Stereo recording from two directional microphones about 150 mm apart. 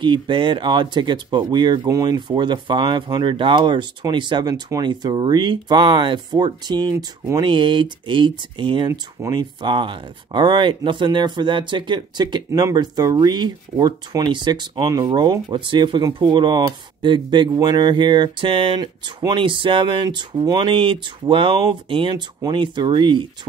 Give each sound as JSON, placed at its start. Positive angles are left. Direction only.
{"t": 0.0, "sound": "speech", "side_deg": -35}